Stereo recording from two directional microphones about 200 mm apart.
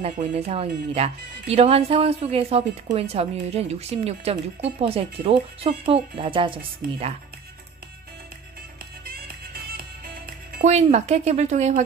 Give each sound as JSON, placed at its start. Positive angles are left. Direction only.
{"t": 0.0, "sound": "a woman's voice", "side_deg": -35}
{"t": 9.1, "sound": "music", "side_deg": -50}